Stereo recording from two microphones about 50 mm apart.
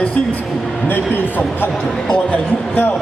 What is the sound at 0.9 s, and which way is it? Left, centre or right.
Speech, left.